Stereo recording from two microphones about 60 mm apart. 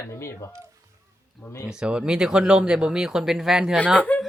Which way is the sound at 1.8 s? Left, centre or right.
Centre.